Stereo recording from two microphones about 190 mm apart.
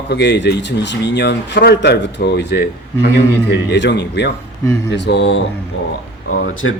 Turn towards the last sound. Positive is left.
turn(degrees=90)